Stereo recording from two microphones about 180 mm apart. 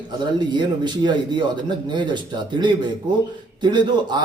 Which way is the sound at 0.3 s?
25° right (ahead or behind).